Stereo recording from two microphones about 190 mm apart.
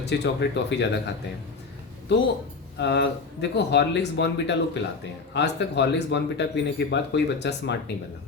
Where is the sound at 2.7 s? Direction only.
65° left (ahead or behind).